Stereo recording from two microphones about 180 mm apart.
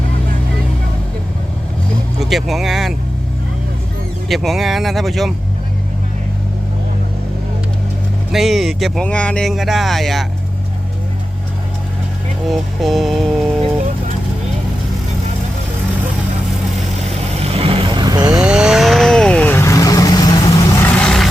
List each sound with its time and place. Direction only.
2.3 s speech: centre (ahead or behind)
4.3 s speech: centre (ahead or behind)
8.3 s speech: centre (ahead or behind)
12.5 s music: centre (ahead or behind)
17.4 s vehicle: 35° right (ahead or behind)
18.3 s vehicle: 5° right (ahead or behind)